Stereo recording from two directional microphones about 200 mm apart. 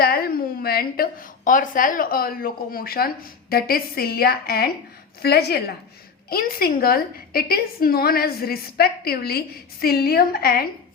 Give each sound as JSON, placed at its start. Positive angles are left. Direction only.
{"t": 0.0, "sound": "a woman's voice", "side_deg": 50}